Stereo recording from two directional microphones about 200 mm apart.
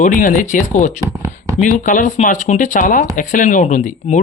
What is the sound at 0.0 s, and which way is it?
Speech, 40° left (ahead or behind).